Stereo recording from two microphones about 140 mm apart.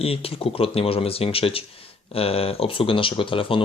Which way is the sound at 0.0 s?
45° left (ahead or behind).